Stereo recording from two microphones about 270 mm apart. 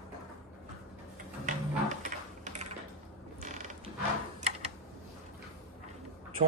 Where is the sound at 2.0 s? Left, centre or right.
Right.